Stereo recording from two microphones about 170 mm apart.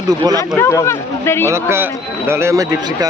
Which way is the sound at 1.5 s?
15° right (ahead or behind).